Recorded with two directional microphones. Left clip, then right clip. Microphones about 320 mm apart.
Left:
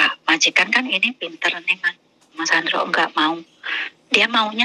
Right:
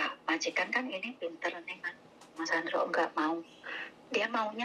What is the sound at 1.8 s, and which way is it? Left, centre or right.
Telephone, left.